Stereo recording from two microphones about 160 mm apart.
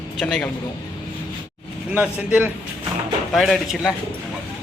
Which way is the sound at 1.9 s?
10° right (ahead or behind).